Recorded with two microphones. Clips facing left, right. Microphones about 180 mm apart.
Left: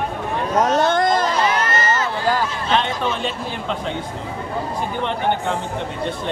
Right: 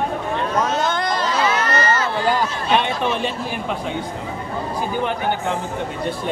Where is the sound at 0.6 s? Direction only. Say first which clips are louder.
Left 7 dB; 40° left (ahead or behind).